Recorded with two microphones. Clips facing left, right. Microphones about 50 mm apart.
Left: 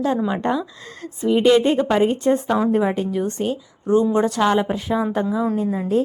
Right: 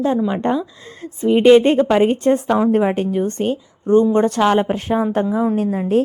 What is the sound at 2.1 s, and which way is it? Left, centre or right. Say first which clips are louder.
A woman's voice: right 3 dB; right.